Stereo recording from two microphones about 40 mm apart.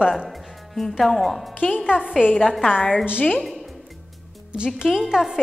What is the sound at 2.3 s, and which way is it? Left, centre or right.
Speech, centre.